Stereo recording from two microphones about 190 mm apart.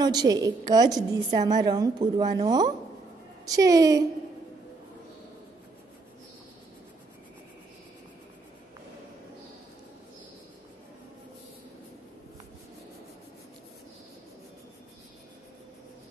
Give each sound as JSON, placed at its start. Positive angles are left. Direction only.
{"t": 0.0, "sound": "a woman's voice", "side_deg": -20}